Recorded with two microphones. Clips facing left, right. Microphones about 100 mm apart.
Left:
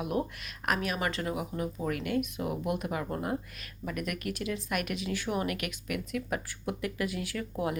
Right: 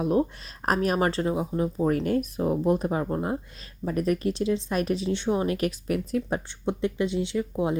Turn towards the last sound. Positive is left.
turn(degrees=-25)  # may be behind; listen again after turning